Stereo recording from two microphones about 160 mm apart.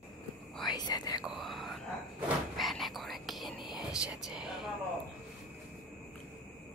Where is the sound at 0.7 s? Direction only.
25° left (ahead or behind).